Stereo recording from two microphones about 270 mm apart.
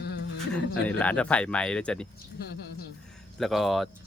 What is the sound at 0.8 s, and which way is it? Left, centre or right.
Speech, centre.